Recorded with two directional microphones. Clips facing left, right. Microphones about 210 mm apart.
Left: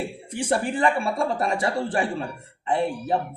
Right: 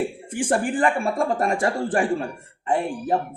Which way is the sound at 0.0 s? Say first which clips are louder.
Right 4 dB; 50° right (ahead or behind).